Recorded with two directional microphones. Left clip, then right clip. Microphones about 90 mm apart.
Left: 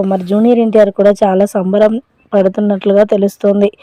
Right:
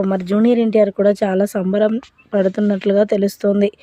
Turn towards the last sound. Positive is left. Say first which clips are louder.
# left 5 dB
turn(degrees=15)  # may be behind; listen again after turning